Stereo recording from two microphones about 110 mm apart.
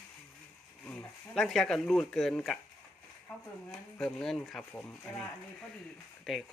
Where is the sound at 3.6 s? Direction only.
5° left (ahead or behind).